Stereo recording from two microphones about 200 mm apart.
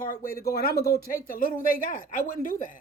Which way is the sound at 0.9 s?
45° left (ahead or behind).